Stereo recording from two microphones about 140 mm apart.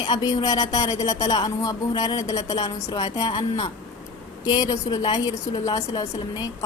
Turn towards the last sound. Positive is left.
turn(degrees=30)  # may be behind; listen again after turning